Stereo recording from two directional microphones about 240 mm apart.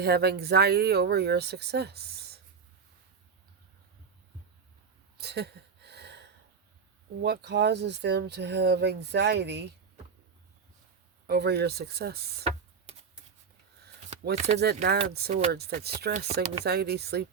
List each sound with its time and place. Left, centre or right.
0.0 s speech: right
5.1 s a sound: right
7.2 s speech: right
11.3 s speech: right
12.9 s shuffling cards: right
14.3 s speech: right
14.6 s speech: right